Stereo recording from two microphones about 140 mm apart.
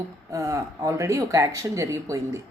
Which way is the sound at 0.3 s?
25° right (ahead or behind).